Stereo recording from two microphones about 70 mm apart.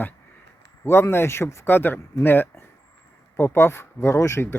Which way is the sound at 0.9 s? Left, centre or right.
Left.